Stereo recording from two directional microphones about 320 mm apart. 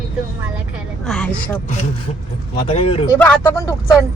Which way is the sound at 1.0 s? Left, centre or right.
Centre.